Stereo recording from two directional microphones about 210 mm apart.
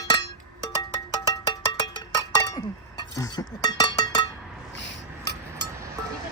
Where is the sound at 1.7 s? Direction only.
20° left (ahead or behind).